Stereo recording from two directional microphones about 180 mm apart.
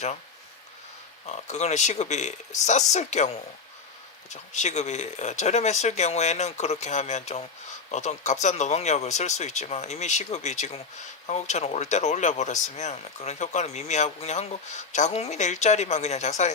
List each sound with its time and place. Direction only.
1.3 s speech: 40° left (ahead or behind)